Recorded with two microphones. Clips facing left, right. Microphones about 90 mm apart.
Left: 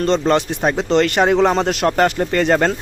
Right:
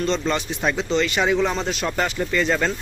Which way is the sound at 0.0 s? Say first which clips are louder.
Left 7 dB; 55° left (ahead or behind).